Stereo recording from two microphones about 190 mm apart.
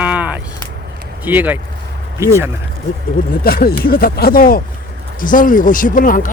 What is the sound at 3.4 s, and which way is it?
Speech, 50° left (ahead or behind).